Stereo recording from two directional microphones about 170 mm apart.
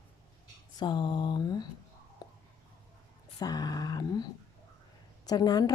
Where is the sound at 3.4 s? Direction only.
25° left (ahead or behind).